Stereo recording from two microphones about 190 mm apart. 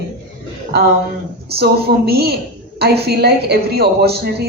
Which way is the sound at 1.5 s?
55° right (ahead or behind).